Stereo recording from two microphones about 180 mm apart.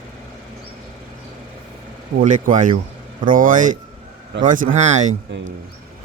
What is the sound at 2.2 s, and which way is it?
Speech, 45° right (ahead or behind).